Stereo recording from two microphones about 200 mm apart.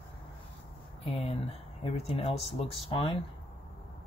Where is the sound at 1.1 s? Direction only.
30° left (ahead or behind).